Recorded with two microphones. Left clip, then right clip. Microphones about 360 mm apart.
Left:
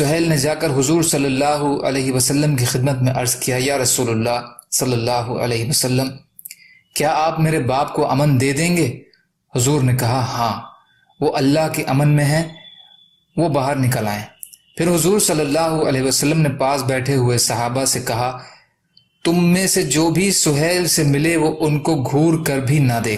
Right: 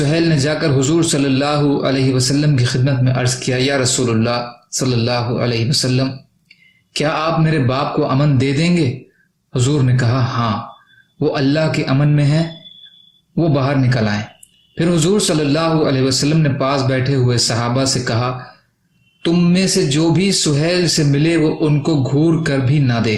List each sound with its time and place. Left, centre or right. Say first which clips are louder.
0.1 s speech: right 1 dB; centre
13.5 s speech: right 4 dB; centre